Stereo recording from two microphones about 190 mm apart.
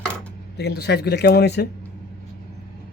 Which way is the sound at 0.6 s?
60° left (ahead or behind).